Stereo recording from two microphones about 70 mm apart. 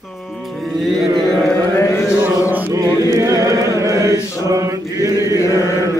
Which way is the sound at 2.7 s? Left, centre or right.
Right.